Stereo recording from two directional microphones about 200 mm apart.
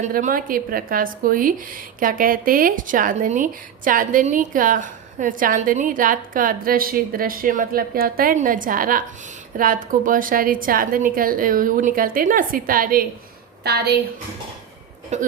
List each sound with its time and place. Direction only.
0.0 s a woman's voice: 40° right (ahead or behind)
15.1 s speech: 35° right (ahead or behind)